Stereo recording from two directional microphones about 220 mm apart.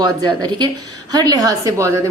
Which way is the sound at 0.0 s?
20° right (ahead or behind).